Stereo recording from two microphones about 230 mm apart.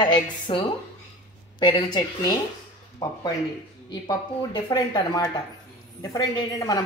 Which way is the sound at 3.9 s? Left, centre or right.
Centre.